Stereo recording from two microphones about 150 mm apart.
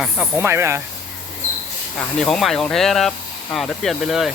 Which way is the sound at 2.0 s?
5° left (ahead or behind).